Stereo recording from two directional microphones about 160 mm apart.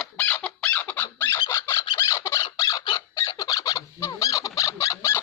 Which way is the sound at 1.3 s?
20° left (ahead or behind).